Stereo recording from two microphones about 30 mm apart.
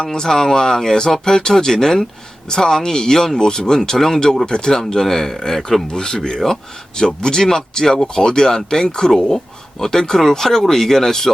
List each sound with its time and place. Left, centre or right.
0.1 s speech: centre
4.9 s speech: centre